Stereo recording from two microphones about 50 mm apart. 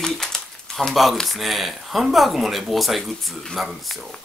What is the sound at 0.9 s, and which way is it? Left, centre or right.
Speech, centre.